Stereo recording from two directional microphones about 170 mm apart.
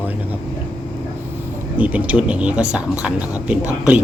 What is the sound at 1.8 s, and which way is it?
Speech, 10° right (ahead or behind).